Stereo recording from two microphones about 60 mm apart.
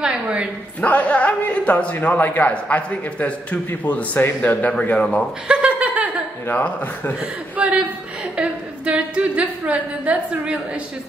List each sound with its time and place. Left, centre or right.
0.0 s a woman's voice: centre
0.7 s a man's voice: left
5.5 s a sound: centre
6.5 s a man's voice: left
7.5 s chuckle: right
8.4 s a sound: centre